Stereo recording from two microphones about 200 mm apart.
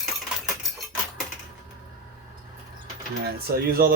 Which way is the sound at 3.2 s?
50° right (ahead or behind).